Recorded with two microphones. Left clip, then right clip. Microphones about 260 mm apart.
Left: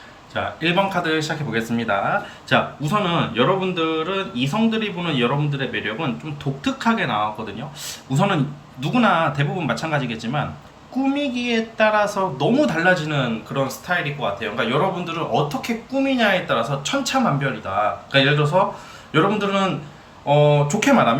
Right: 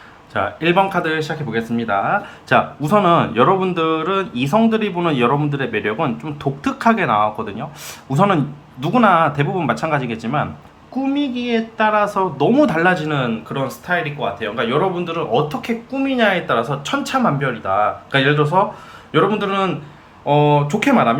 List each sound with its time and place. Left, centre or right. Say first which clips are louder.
0.3 s speech: right 4 dB; centre